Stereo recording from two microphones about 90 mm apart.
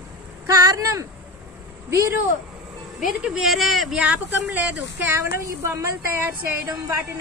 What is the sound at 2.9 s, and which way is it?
A man's voice, 5° right (ahead or behind).